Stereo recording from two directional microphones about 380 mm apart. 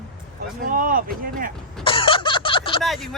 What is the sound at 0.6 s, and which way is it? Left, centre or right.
Speech, right.